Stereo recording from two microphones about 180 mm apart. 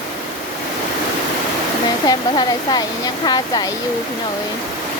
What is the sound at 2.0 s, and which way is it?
Speech, 20° left (ahead or behind).